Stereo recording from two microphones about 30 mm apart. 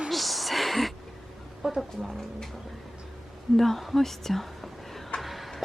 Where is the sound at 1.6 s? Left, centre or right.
Centre.